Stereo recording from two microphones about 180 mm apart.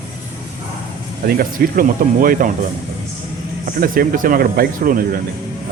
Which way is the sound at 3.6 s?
50° right (ahead or behind).